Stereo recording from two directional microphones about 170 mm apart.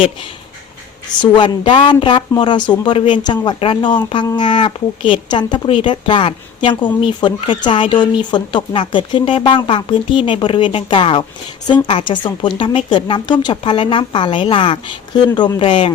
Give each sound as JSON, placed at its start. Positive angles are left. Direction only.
{"t": 1.2, "sound": "speech", "side_deg": 30}